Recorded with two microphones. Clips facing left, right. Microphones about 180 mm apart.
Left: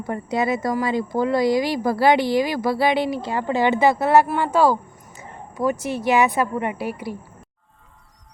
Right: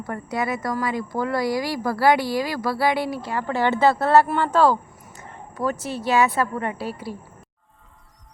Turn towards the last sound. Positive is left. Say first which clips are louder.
# left 2 dB
turn(degrees=15)  # may be behind; listen again after turning